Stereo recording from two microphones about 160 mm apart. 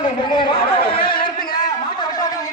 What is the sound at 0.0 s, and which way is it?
Chatter, 30° left (ahead or behind).